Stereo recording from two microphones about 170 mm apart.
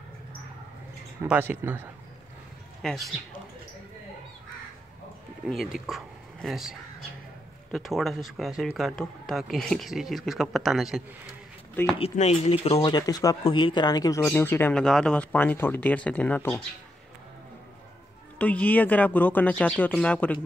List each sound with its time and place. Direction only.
1.2 s speech: 10° right (ahead or behind)
2.8 s speech: centre (ahead or behind)
5.5 s speech: centre (ahead or behind)
12.0 s speech: 40° left (ahead or behind)
12.9 s a man's voice: 20° left (ahead or behind)
14.2 s speech: 10° left (ahead or behind)
18.4 s speech: 10° left (ahead or behind)